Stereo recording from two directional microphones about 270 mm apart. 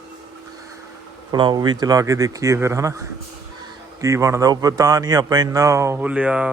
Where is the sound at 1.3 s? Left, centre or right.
Centre.